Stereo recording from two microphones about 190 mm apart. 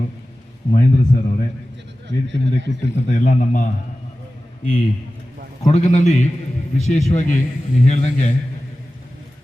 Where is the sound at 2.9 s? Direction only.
40° left (ahead or behind).